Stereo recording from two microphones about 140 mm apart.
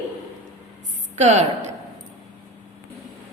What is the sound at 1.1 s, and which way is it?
Speech, 55° right (ahead or behind).